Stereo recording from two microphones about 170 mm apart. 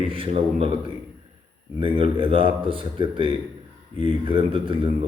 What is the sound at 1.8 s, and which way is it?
A man's voice, 30° right (ahead or behind).